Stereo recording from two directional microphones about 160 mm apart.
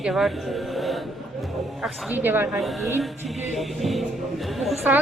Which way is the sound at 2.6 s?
Centre (ahead or behind).